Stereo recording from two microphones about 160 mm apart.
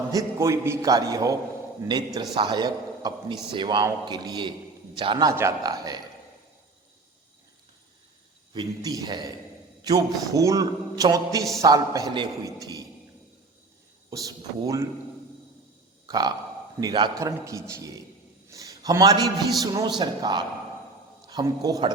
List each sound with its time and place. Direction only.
0.1 s a man's voice: 20° right (ahead or behind)
5.3 s a man's voice: 15° right (ahead or behind)
8.5 s a man's voice: 25° right (ahead or behind)
14.1 s a man's voice: 20° right (ahead or behind)
16.0 s a man's voice: 25° right (ahead or behind)
18.5 s a sound: 20° right (ahead or behind)
19.5 s a man's voice: 20° right (ahead or behind)